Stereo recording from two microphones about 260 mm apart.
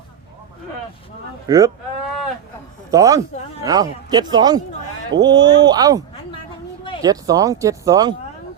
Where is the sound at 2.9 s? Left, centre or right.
Centre.